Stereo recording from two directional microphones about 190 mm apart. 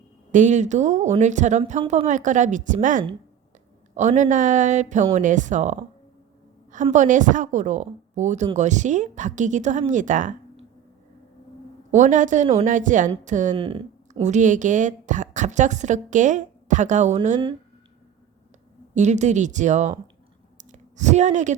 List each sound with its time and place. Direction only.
0.3 s speech: 40° right (ahead or behind)
1.8 s speech: 30° right (ahead or behind)
2.0 s speech: 40° right (ahead or behind)
6.9 s speech: 40° right (ahead or behind)
11.9 s speech: 40° right (ahead or behind)
13.6 s speech: 30° right (ahead or behind)
18.9 s speech: 40° right (ahead or behind)
20.7 s a sound: 40° right (ahead or behind)